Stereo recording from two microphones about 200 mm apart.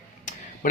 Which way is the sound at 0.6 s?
45° left (ahead or behind).